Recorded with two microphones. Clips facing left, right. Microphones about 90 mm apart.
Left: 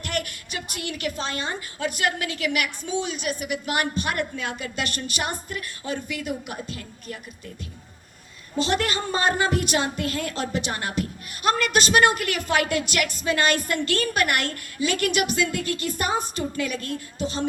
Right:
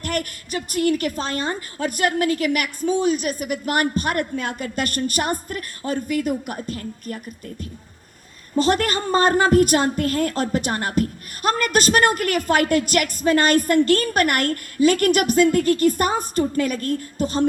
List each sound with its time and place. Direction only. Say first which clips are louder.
0.0 s a woman's voice: right 4 dB; 45° right (ahead or behind)
8.5 s a woman's voice: right 5 dB; 45° right (ahead or behind)